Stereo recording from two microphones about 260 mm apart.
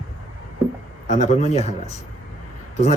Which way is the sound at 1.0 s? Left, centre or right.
Left.